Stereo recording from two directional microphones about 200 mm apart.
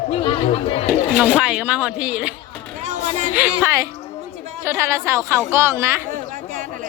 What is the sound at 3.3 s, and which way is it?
Speech, 10° right (ahead or behind).